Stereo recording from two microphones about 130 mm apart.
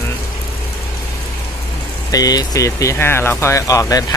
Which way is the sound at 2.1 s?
30° left (ahead or behind).